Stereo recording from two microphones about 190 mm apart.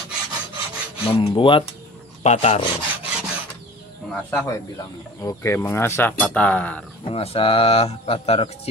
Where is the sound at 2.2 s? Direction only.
35° left (ahead or behind).